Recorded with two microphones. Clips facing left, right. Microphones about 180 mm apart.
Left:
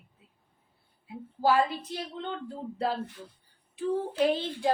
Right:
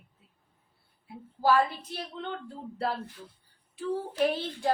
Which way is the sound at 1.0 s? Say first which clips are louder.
Even; 15° left (ahead or behind).